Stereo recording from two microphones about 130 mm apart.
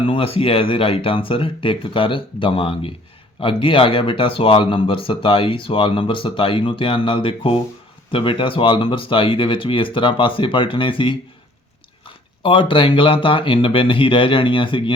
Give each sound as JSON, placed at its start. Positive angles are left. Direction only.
{"t": 0.0, "sound": "speech", "side_deg": 45}